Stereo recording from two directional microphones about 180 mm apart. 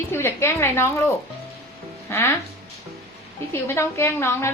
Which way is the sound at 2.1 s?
15° left (ahead or behind).